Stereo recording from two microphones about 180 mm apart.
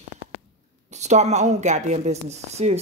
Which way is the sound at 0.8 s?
40° right (ahead or behind).